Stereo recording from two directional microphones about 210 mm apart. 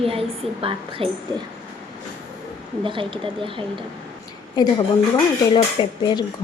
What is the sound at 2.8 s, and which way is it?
Speech, 25° right (ahead or behind).